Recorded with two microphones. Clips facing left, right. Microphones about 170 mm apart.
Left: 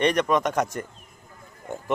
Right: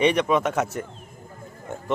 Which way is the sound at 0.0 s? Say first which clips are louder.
Right 1 dB; 5° right (ahead or behind).